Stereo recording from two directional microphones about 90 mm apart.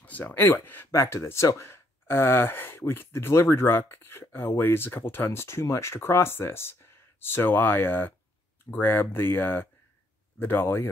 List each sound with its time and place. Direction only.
0.0 s speech: 20° left (ahead or behind)